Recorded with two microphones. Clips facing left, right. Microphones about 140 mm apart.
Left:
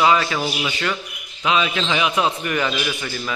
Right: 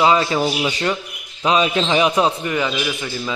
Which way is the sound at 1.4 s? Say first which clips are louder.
Right 3 dB; 35° right (ahead or behind).